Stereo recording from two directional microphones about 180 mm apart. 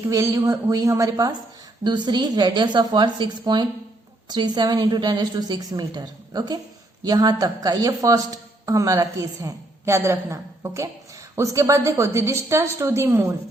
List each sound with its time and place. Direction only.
0.1 s a woman's voice: 20° right (ahead or behind)